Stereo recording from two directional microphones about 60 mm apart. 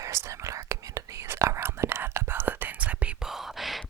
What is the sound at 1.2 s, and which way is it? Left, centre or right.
Whispering, right.